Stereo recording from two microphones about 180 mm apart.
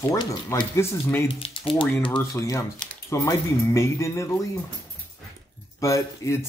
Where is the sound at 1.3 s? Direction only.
30° left (ahead or behind).